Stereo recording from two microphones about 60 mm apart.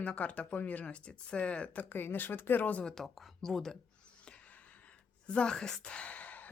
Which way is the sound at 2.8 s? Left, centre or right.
Centre.